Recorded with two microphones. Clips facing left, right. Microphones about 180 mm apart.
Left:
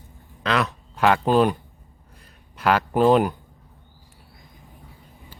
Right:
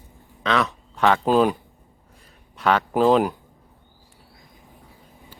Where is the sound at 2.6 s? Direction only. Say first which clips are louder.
Even; centre (ahead or behind).